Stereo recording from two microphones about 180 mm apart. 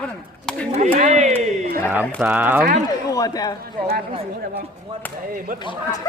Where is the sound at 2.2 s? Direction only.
10° right (ahead or behind).